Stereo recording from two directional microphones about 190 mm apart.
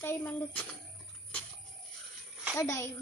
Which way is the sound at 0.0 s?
10° left (ahead or behind).